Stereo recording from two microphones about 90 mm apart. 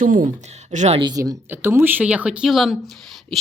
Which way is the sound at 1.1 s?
40° right (ahead or behind).